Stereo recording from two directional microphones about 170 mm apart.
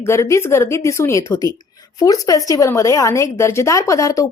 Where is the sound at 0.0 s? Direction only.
15° left (ahead or behind).